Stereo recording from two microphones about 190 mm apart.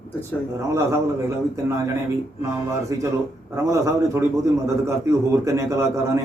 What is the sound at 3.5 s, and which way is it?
A man's voice, 15° right (ahead or behind).